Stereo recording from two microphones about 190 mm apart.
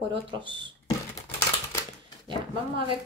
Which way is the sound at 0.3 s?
25° right (ahead or behind).